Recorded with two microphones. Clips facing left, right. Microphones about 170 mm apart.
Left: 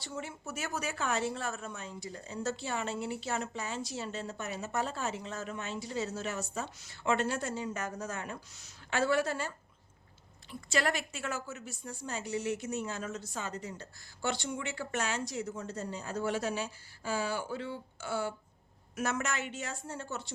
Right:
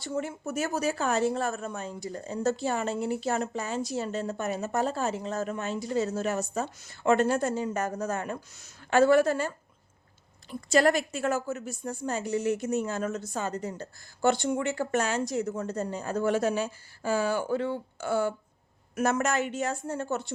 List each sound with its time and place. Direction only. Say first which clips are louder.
0.0 s speech: right 9 dB; 45° right (ahead or behind)
10.5 s speech: right 9 dB; 40° right (ahead or behind)